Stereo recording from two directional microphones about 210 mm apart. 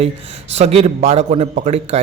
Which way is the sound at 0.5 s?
30° right (ahead or behind).